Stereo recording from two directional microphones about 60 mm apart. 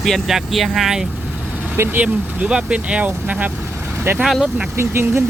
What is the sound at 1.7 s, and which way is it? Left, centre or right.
Speech, right.